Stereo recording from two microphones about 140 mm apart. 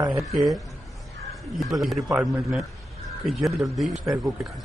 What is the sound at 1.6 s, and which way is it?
Speech, centre (ahead or behind).